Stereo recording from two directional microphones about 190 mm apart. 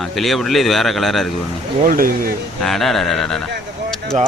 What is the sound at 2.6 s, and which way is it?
Speech, centre (ahead or behind).